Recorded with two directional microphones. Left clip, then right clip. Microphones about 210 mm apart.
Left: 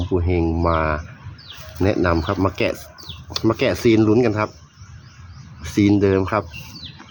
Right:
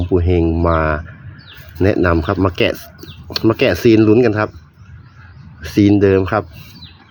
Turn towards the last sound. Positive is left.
turn(degrees=-15)  # may be behind; listen again after turning